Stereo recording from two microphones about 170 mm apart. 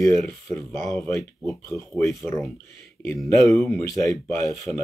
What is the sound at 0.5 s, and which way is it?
Speech, centre (ahead or behind).